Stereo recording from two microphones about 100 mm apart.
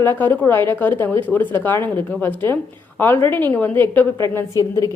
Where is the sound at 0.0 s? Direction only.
25° left (ahead or behind).